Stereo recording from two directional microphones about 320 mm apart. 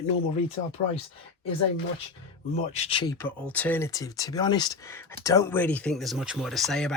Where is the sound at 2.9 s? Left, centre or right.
Centre.